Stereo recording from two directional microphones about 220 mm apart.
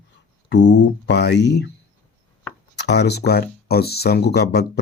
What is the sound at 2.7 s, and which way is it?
Speech, 50° left (ahead or behind).